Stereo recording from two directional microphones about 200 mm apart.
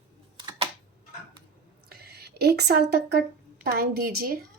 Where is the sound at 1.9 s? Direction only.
50° right (ahead or behind).